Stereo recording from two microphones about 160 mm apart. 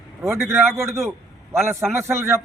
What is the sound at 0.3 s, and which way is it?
A man's voice, 15° right (ahead or behind).